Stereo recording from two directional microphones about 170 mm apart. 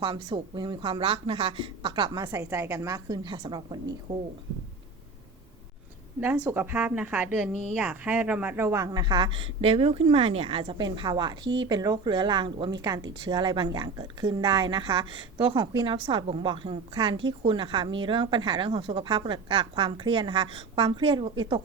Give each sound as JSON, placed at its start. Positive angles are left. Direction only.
{"t": 0.0, "sound": "a woman's voice", "side_deg": -30}
{"t": 6.1, "sound": "a woman's voice", "side_deg": -15}